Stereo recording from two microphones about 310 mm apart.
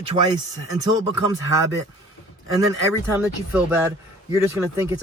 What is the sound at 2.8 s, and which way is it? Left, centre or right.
Speech, centre.